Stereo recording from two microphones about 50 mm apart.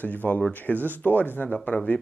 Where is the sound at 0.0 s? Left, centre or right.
Left.